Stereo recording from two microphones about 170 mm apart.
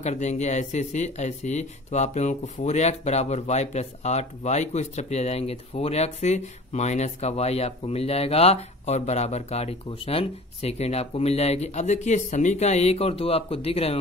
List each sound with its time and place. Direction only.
0.0 s speech: 40° left (ahead or behind)